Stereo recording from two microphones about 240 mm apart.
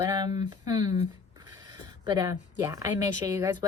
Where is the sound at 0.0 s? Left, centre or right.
Centre.